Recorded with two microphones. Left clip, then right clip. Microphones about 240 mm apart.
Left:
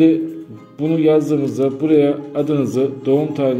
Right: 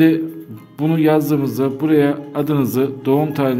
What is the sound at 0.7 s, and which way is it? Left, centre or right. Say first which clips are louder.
A man's voice: left 1 dB; right.